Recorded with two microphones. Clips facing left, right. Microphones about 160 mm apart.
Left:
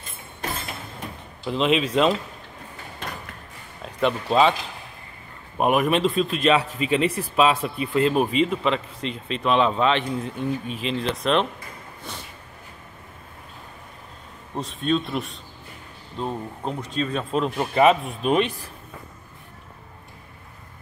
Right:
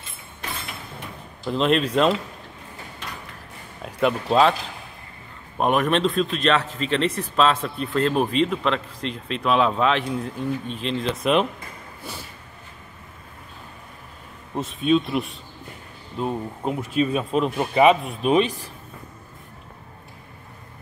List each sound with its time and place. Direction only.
0.0 s a sound: 45° left (ahead or behind)
1.4 s speech: centre (ahead or behind)
3.8 s speech: centre (ahead or behind)
5.6 s speech: 5° left (ahead or behind)
12.1 s snort: 5° right (ahead or behind)
14.5 s speech: centre (ahead or behind)